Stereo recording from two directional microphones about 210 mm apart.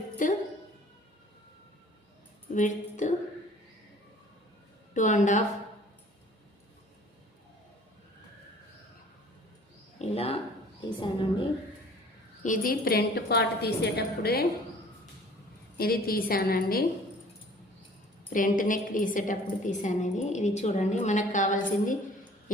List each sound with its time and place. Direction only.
0.2 s a woman's voice: 40° left (ahead or behind)
2.5 s a woman's voice: 35° left (ahead or behind)
4.9 s a woman's voice: 35° left (ahead or behind)
10.0 s a woman's voice: 30° left (ahead or behind)
12.4 s a woman's voice: 40° left (ahead or behind)
15.8 s a woman's voice: 45° left (ahead or behind)
18.3 s a woman's voice: 40° left (ahead or behind)